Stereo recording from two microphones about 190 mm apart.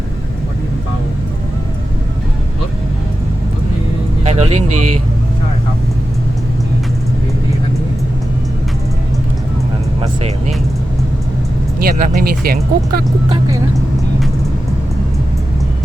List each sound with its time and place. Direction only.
4.2 s speech: 35° right (ahead or behind)
10.0 s speech: 35° right (ahead or behind)
11.8 s speech: 50° right (ahead or behind)